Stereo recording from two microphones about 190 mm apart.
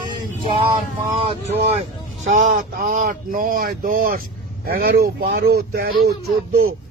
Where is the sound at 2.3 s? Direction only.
40° right (ahead or behind).